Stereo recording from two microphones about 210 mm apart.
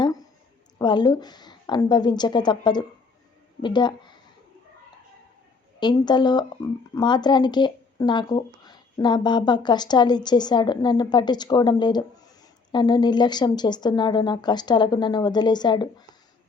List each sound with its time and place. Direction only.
0.8 s speech: 20° left (ahead or behind)
5.8 s speech: 20° left (ahead or behind)